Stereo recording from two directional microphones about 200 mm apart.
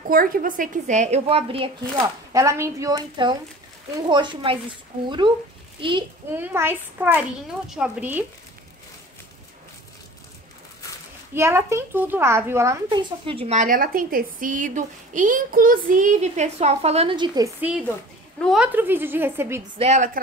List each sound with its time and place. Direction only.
0.1 s speech: 45° right (ahead or behind); by 1.7 s 30° right (ahead or behind)
2.0 s a woman's voice: 15° right (ahead or behind)
6.3 s a woman's voice: 10° right (ahead or behind)
11.3 s a woman's voice: 15° right (ahead or behind)
13.2 s speech: 25° right (ahead or behind)
17.6 s a woman's voice: 5° right (ahead or behind)
19.8 s speech: 35° right (ahead or behind)